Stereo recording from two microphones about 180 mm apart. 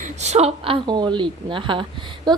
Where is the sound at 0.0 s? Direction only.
40° right (ahead or behind).